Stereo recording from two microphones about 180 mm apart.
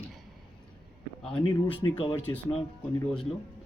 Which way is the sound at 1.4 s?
30° left (ahead or behind).